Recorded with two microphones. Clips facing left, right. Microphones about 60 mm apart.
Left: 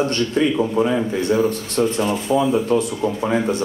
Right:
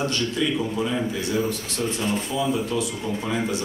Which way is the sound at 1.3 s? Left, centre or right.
Left.